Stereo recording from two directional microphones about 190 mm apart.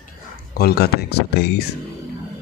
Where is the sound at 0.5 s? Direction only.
55° left (ahead or behind).